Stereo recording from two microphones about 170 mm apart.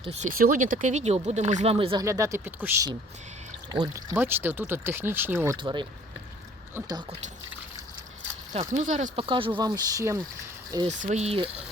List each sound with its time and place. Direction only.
0.0 s speech: 40° right (ahead or behind)
0.3 s speech: 55° right (ahead or behind); by 2.0 s 30° right (ahead or behind)
2.0 s speech: 15° right (ahead or behind)
5.5 s speech: 30° right (ahead or behind)
8.7 s speech: 45° right (ahead or behind)
9.2 s speech: 30° right (ahead or behind)
10.8 s speech: 40° right (ahead or behind)